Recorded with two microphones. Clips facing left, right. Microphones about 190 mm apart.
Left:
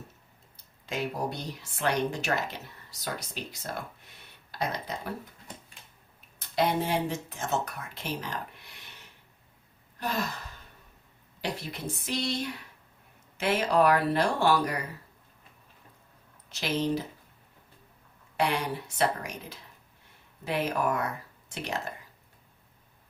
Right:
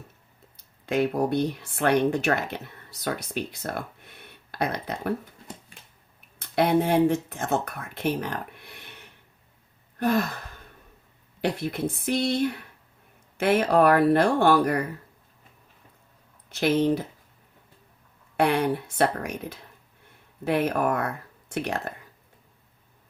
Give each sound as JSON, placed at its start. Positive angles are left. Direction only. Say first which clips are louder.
{"t": 0.5, "sound": "speech", "louder": "right 10 dB", "side_deg": -60}
{"t": 6.6, "sound": "speech", "louder": "right 7 dB", "side_deg": -55}
{"t": 10.0, "sound": "speech", "louder": "right 9 dB", "side_deg": -55}
{"t": 11.3, "sound": "speech", "louder": "right 8 dB", "side_deg": -60}
{"t": 16.5, "sound": "speech", "louder": "right 7 dB", "side_deg": -55}
{"t": 18.3, "sound": "speech", "louder": "right 6 dB", "side_deg": -55}